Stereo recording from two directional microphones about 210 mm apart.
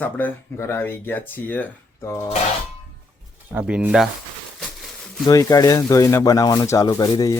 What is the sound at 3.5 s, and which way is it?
Speech, 5° right (ahead or behind).